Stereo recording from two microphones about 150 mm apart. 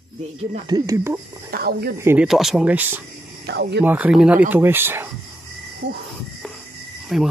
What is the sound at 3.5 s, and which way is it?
Speech, 90° right.